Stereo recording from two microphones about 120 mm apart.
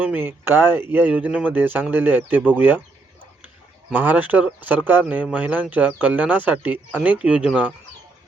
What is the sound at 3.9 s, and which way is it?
Speech, 15° right (ahead or behind).